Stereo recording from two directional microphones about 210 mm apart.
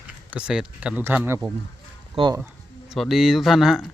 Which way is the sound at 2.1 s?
20° right (ahead or behind).